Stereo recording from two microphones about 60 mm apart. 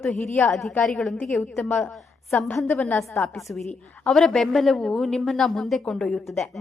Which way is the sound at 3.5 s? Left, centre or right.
Centre.